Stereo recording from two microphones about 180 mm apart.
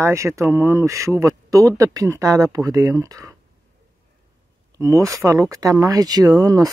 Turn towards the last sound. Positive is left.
turn(degrees=-20)  # may be behind; listen again after turning